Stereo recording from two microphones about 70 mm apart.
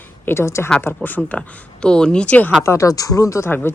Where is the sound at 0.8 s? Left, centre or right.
Left.